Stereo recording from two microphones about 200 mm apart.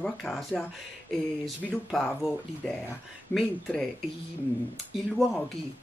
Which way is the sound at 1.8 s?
Centre (ahead or behind).